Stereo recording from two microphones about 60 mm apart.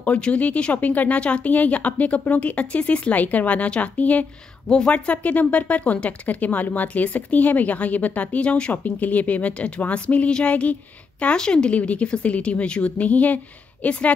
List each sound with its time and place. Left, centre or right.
0.0 s speech: left